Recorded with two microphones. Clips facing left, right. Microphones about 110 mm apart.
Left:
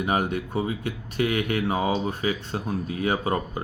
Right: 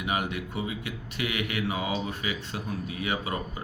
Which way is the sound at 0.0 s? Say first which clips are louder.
Left 5 dB; 40° left (ahead or behind).